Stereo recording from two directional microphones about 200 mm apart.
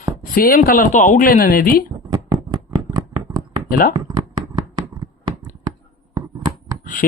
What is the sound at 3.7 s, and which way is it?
Speech, 45° left (ahead or behind).